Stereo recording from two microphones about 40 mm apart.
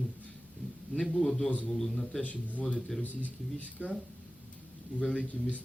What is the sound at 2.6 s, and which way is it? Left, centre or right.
Speech, left.